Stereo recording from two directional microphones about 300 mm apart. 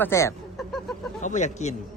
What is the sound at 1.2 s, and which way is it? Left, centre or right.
Speech, left.